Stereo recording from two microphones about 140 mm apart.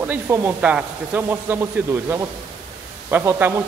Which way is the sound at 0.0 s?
15° right (ahead or behind).